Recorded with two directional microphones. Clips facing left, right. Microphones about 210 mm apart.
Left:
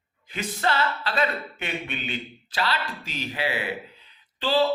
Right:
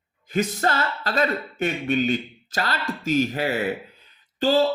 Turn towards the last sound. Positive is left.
turn(degrees=-45)  # may be behind; listen again after turning